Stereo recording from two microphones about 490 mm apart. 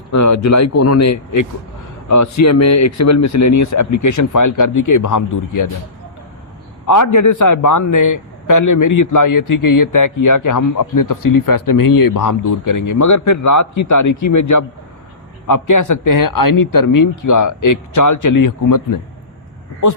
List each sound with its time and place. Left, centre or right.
0.1 s a man's voice: left
6.8 s a man's voice: left